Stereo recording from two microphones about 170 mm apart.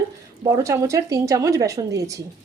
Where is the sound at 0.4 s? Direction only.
20° right (ahead or behind).